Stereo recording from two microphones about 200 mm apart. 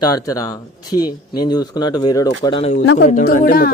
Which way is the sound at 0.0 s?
15° left (ahead or behind).